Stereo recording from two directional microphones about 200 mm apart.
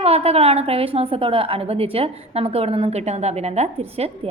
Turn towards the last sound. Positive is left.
turn(degrees=-30)  # may be behind; listen again after turning